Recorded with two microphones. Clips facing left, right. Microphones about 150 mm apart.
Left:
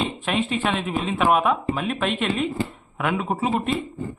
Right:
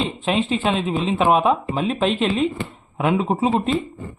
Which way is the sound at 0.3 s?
30° right (ahead or behind).